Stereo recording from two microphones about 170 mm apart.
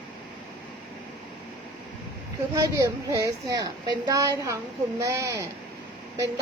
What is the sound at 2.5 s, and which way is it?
A woman's voice, 20° right (ahead or behind).